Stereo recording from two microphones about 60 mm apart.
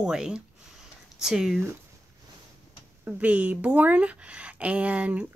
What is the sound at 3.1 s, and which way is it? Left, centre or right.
Speech, right.